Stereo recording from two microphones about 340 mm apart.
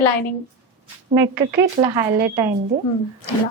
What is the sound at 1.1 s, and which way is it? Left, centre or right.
A woman's voice, centre.